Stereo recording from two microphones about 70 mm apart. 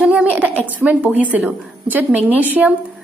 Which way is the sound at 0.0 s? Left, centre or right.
Right.